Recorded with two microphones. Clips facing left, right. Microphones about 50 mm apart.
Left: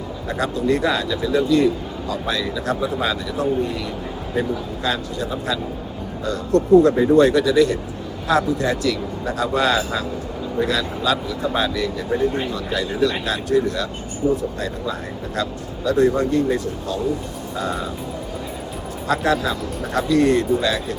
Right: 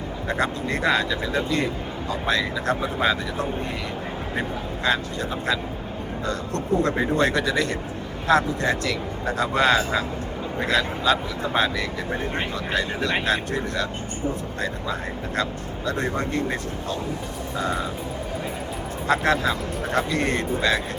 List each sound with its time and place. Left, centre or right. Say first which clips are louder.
0.3 s a man's voice: left 5 dB; right
6.8 s a man's voice: left 7 dB; right
19.0 s a man's voice: left 1 dB; right